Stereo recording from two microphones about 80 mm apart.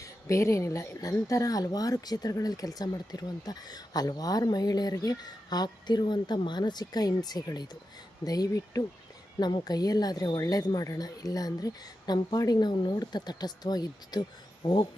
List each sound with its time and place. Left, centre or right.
0.0 s speech: left